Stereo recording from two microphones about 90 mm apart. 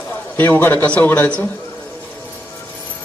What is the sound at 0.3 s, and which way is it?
Speech, 25° left (ahead or behind).